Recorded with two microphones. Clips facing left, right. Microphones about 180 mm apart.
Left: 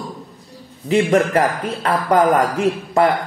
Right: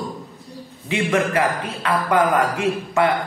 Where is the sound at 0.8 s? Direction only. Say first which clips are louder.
Left 5 dB; 40° left (ahead or behind).